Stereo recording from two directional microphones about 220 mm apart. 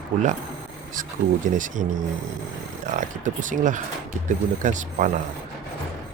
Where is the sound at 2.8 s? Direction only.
35° right (ahead or behind).